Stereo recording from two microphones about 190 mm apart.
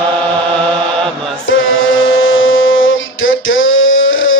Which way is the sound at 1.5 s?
90° left.